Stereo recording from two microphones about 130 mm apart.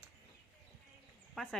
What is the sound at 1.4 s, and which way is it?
Speech, 5° left (ahead or behind).